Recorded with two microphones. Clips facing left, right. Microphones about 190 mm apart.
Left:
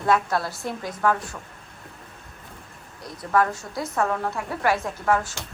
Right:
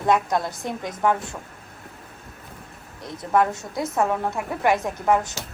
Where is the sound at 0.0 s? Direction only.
20° right (ahead or behind).